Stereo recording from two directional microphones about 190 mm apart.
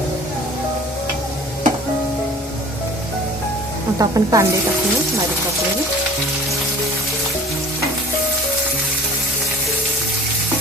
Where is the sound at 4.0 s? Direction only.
20° right (ahead or behind).